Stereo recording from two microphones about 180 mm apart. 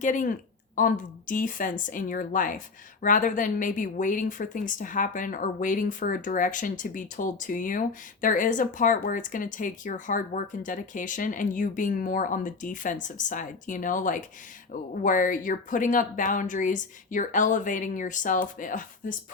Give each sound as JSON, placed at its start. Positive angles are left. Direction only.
{"t": 0.0, "sound": "a woman's voice", "side_deg": 45}